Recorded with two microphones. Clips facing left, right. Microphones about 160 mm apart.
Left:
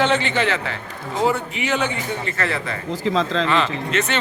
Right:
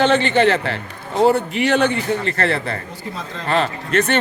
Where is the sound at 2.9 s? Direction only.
90° left.